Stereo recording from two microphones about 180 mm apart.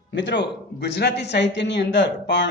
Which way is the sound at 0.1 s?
85° left.